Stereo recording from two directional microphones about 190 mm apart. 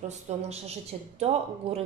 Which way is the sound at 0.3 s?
35° right (ahead or behind).